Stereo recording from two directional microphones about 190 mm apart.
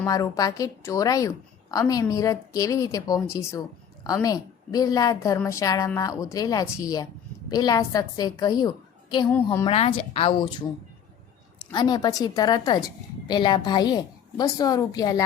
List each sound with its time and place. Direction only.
0.0 s a woman's voice: 20° left (ahead or behind)
9.6 s a woman's voice: 30° left (ahead or behind)
11.7 s a woman's voice: 20° left (ahead or behind)